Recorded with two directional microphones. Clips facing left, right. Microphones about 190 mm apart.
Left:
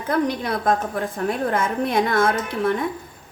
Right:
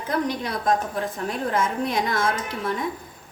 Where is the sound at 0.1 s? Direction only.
55° left (ahead or behind).